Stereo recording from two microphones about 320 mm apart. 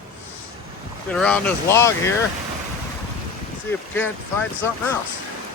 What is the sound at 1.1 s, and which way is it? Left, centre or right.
Speech, centre.